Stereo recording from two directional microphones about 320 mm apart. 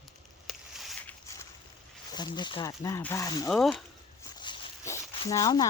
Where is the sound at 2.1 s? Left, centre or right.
Centre.